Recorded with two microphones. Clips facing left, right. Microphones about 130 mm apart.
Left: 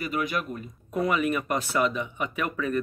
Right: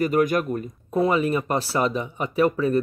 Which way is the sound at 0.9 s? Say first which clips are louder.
Right 4 dB; 30° right (ahead or behind).